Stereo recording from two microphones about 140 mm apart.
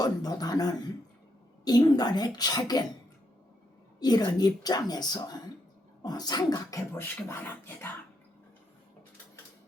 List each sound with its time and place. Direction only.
0.0 s speech: 30° left (ahead or behind)
4.0 s speech: 30° left (ahead or behind)